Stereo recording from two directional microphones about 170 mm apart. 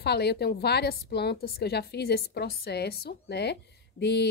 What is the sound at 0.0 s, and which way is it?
A woman's voice, 75° left (ahead or behind).